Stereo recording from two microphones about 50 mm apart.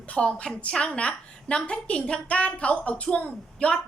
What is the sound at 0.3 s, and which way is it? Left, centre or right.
A woman's voice, left.